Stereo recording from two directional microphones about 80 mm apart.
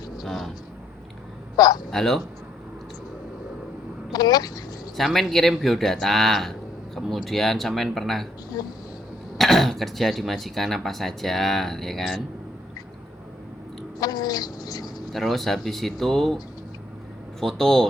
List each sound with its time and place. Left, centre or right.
0.2 s vehicle: centre
1.5 s speech: left
1.9 s speech: centre
4.1 s speech: left
4.9 s speech: centre
9.4 s speech: centre
14.0 s cat: left
15.1 s speech: centre
17.4 s speech: centre